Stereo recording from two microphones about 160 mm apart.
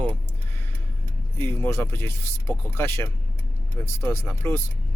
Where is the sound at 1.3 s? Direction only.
15° left (ahead or behind).